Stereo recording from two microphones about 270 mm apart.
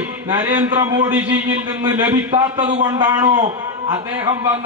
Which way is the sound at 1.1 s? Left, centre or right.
Centre.